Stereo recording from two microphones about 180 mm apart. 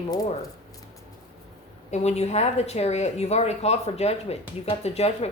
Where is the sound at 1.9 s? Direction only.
40° left (ahead or behind).